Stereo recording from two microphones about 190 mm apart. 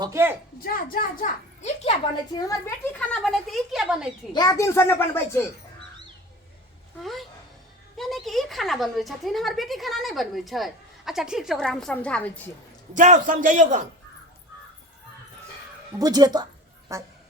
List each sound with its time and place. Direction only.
0.0 s a woman's voice: 15° right (ahead or behind)
0.6 s a child's voice: 50° left (ahead or behind)
2.3 s a child's voice: 15° left (ahead or behind)
3.0 s a woman's voice: 5° left (ahead or behind)
4.3 s a child's voice: 20° left (ahead or behind)
7.0 s a woman's voice: centre (ahead or behind)
12.9 s a man's voice: 40° right (ahead or behind)
16.0 s a woman's voice: 20° right (ahead or behind)